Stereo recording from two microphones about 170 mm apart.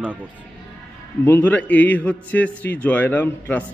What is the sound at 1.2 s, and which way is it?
A man's voice, 10° left (ahead or behind).